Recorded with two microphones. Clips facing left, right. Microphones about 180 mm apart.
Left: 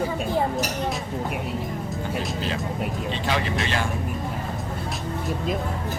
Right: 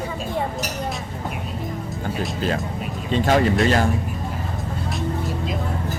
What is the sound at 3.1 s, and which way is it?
Speech, 45° right (ahead or behind).